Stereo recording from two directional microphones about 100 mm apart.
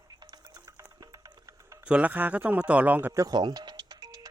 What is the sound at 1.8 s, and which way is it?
Speech, 10° right (ahead or behind).